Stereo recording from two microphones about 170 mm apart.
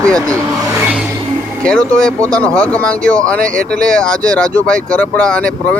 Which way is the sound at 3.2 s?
55° right (ahead or behind).